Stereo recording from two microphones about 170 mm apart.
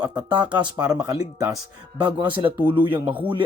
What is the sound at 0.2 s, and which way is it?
Speech, 25° right (ahead or behind).